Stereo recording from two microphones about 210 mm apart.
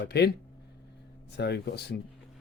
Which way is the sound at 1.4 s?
55° left (ahead or behind).